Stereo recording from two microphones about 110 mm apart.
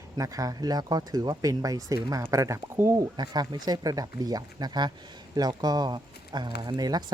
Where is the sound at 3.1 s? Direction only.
40° right (ahead or behind).